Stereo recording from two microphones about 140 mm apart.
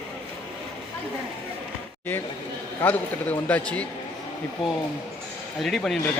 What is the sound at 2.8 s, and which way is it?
A man's voice, 10° left (ahead or behind).